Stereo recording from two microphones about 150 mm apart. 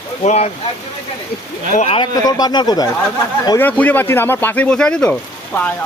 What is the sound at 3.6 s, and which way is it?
Speech, 10° left (ahead or behind).